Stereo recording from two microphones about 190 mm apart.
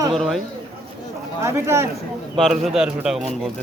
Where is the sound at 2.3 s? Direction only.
Centre (ahead or behind).